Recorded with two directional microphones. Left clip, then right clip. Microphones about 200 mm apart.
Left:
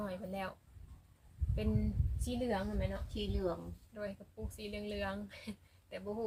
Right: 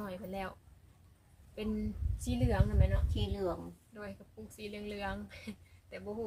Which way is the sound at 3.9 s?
Centre (ahead or behind).